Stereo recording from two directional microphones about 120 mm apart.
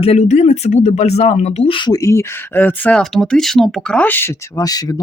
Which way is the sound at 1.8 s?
35° left (ahead or behind).